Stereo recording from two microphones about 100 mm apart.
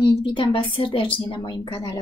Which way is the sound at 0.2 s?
55° left (ahead or behind).